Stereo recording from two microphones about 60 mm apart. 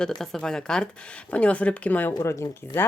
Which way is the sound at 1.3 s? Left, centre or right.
Left.